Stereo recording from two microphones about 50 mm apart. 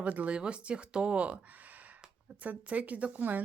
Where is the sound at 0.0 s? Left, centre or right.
Right.